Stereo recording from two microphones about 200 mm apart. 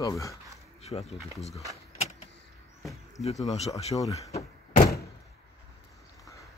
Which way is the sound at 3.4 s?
30° left (ahead or behind).